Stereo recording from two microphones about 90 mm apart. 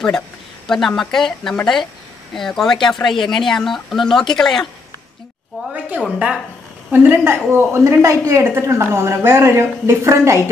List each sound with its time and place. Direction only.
0.7 s speech: 5° left (ahead or behind)
5.7 s a woman's voice: 15° right (ahead or behind)
6.9 s a woman's voice: 25° right (ahead or behind)